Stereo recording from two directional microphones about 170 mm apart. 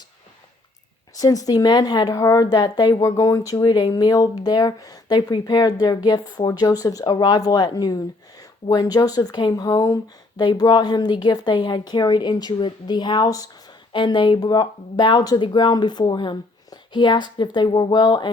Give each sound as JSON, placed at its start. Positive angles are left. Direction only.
{"t": 1.1, "sound": "speech", "side_deg": 20}